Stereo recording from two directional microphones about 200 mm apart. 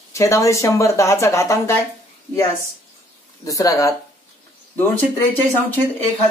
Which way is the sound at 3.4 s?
15° left (ahead or behind).